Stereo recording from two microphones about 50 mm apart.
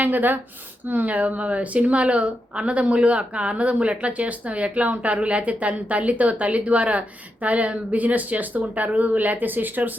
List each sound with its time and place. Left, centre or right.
0.0 s a woman's voice: right